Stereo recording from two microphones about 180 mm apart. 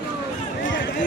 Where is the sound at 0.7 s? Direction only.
75° left (ahead or behind).